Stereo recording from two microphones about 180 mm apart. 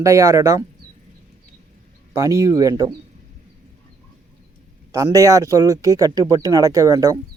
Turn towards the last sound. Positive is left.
turn(degrees=-20)  # may be behind; listen again after turning